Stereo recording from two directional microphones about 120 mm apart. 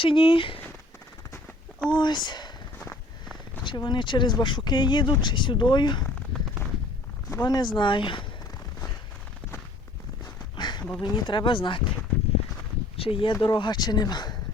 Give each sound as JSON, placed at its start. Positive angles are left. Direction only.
{"t": 0.0, "sound": "speech", "side_deg": 45}
{"t": 2.0, "sound": "speech", "side_deg": 40}
{"t": 2.8, "sound": "walk", "side_deg": 10}
{"t": 3.6, "sound": "speech", "side_deg": 40}
{"t": 7.4, "sound": "speech", "side_deg": 35}
{"t": 10.6, "sound": "a sound", "side_deg": 35}
{"t": 11.0, "sound": "speech", "side_deg": 40}
{"t": 13.0, "sound": "speech", "side_deg": 50}